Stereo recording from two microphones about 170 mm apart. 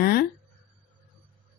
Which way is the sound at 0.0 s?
65° left (ahead or behind).